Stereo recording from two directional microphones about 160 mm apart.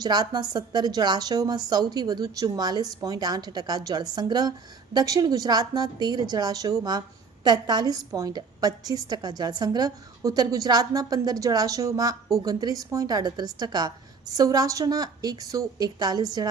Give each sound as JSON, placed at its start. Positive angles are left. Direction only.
{"t": 0.0, "sound": "a woman's voice", "side_deg": -25}